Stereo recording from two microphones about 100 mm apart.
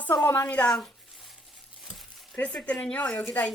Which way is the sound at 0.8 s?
Centre (ahead or behind).